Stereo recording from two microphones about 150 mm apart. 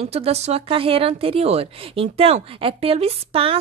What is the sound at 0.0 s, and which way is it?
A woman's voice, 45° right (ahead or behind).